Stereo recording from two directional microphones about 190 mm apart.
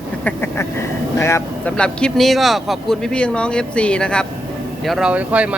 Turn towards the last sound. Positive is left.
turn(degrees=-5)  # may be behind; listen again after turning